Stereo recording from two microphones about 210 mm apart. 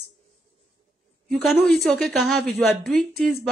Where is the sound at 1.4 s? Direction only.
Centre (ahead or behind).